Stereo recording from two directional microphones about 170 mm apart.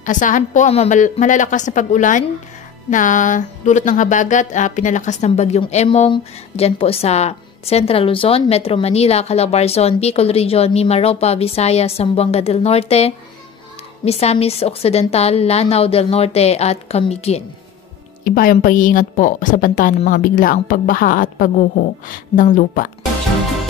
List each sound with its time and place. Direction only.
0.0 s a woman's voice: 50° left (ahead or behind)
18.2 s a woman's voice: 55° left (ahead or behind)